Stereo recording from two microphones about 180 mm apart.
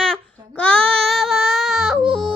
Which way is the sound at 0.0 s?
5° left (ahead or behind).